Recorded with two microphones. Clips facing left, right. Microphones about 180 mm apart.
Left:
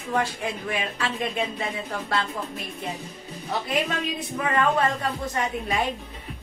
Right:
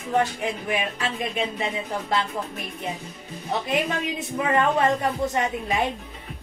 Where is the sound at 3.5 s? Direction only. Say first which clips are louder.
Right 2 dB; 25° right (ahead or behind).